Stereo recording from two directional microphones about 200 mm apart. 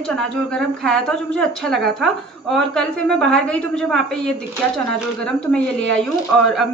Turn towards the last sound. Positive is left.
turn(degrees=0)  # may be behind; listen again after turning